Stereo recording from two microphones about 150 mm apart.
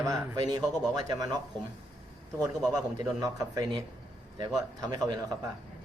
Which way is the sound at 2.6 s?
25° right (ahead or behind).